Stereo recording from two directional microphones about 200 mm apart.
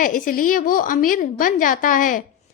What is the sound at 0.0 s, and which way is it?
A woman's voice, 45° left (ahead or behind).